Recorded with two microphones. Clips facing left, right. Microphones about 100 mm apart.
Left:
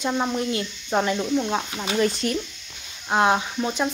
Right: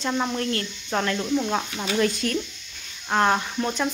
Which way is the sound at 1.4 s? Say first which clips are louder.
Left 1 dB; centre (ahead or behind).